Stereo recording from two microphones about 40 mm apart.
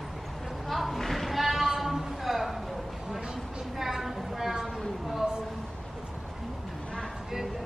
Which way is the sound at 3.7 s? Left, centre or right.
Centre.